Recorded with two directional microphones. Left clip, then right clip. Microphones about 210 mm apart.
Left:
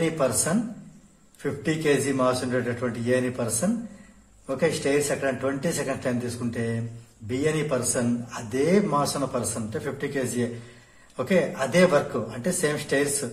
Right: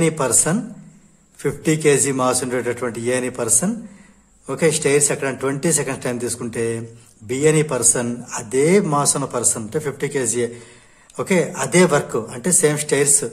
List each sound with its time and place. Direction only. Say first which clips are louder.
0.0 s a man's voice: right 5 dB; 40° right (ahead or behind)